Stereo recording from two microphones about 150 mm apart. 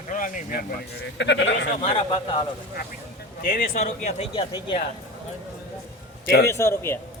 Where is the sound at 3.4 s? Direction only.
70° left (ahead or behind).